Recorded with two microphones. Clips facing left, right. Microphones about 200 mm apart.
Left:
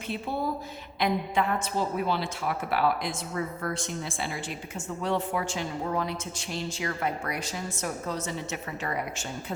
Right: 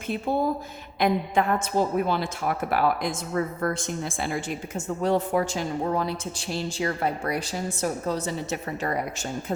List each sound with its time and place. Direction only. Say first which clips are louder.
0.1 s a woman's voice: right 6 dB; 45° right (ahead or behind)